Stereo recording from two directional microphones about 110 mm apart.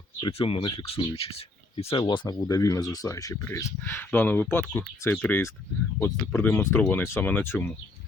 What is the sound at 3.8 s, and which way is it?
Speech, 15° left (ahead or behind).